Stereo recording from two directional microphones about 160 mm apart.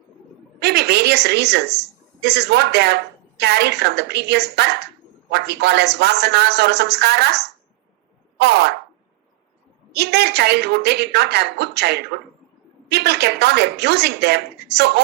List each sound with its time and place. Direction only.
0.6 s a woman's voice: 90° right
9.9 s a woman's voice: 90° right